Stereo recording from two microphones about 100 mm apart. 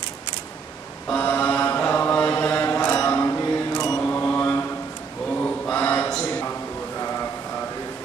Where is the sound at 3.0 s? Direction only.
25° left (ahead or behind).